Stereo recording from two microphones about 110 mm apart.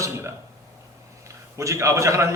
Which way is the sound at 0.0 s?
25° right (ahead or behind).